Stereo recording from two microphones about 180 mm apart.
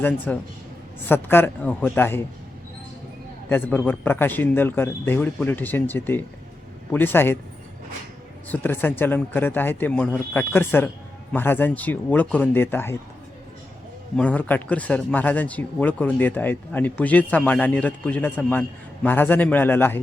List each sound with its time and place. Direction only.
0.3 s a man's voice: 10° left (ahead or behind)
3.5 s a man's voice: 10° left (ahead or behind)
8.4 s a man's voice: 10° left (ahead or behind)
14.2 s a man's voice: 10° left (ahead or behind)